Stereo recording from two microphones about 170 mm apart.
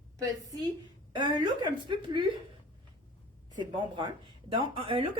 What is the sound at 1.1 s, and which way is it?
A woman's voice, 25° right (ahead or behind).